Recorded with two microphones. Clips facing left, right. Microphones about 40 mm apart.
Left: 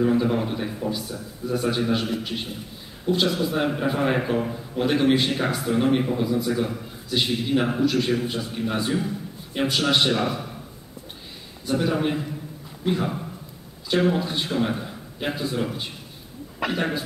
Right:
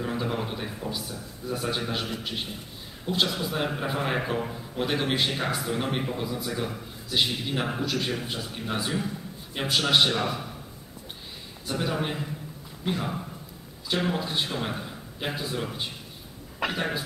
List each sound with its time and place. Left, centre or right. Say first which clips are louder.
0.0 s a man's voice: left 8 dB; centre
11.7 s a man's voice: left 6 dB; centre